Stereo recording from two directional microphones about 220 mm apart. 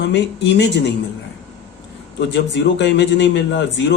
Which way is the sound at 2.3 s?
50° left (ahead or behind).